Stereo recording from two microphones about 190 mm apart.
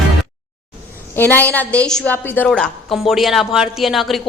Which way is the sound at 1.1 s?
10° left (ahead or behind).